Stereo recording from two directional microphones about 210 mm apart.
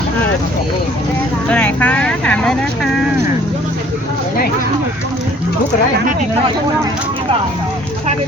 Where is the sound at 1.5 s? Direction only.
5° left (ahead or behind).